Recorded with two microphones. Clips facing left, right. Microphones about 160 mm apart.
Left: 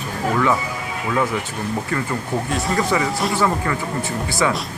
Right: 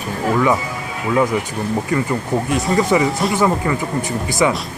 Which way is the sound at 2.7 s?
20° right (ahead or behind).